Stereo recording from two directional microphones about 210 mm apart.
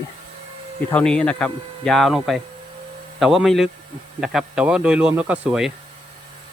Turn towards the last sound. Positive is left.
turn(degrees=-5)  # may be behind; listen again after turning